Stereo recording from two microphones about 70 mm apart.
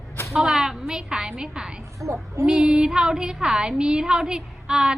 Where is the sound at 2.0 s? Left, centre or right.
Right.